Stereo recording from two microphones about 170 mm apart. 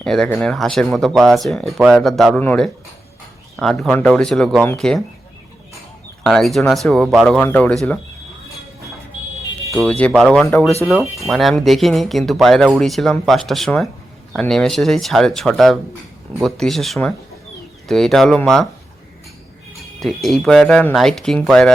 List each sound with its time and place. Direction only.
0.0 s speech: 5° left (ahead or behind)
6.2 s speech: centre (ahead or behind)
9.8 s speech: 10° left (ahead or behind)
20.0 s speech: centre (ahead or behind)